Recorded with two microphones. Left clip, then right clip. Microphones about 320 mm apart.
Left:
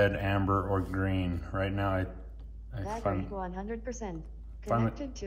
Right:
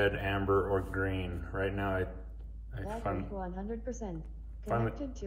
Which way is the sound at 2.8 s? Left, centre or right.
Centre.